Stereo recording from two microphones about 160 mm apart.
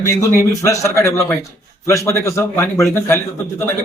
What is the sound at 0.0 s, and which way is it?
A man's voice, 20° left (ahead or behind).